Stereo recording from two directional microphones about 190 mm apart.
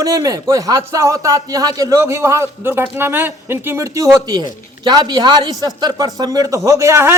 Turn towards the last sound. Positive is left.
turn(degrees=-15)  # may be behind; listen again after turning